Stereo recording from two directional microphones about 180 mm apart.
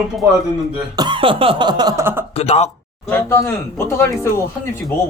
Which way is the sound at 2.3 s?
35° left (ahead or behind).